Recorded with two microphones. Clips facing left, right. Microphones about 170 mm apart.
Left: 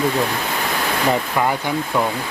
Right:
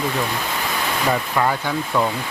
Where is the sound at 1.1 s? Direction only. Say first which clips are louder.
Left 1 dB; 10° left (ahead or behind).